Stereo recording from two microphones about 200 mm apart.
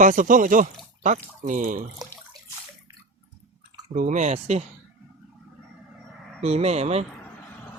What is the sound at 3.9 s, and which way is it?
Speech, 40° right (ahead or behind).